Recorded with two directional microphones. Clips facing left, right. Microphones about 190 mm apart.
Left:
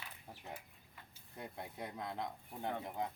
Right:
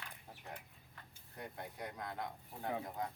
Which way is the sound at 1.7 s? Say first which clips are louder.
Left 3 dB; 25° left (ahead or behind).